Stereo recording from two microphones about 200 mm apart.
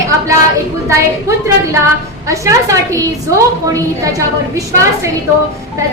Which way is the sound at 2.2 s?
15° right (ahead or behind).